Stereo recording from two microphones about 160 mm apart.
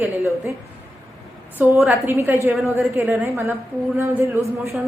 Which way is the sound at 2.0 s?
15° right (ahead or behind).